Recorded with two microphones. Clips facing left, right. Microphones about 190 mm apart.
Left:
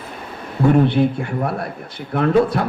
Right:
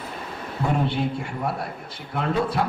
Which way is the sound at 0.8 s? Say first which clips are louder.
Left 8 dB; 60° left (ahead or behind).